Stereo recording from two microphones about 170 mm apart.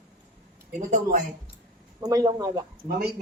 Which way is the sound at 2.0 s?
20° right (ahead or behind).